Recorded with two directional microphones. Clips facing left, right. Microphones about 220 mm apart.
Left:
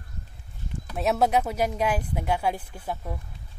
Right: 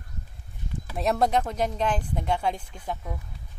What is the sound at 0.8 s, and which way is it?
Speech, centre (ahead or behind).